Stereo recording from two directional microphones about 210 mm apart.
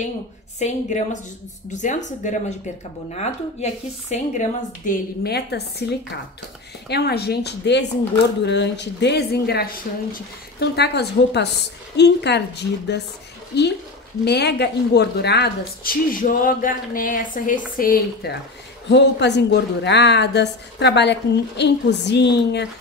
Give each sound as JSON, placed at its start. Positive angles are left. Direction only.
{"t": 0.6, "sound": "speech", "side_deg": 35}
{"t": 5.2, "sound": "a woman's voice", "side_deg": 50}
{"t": 18.9, "sound": "a woman's voice", "side_deg": 55}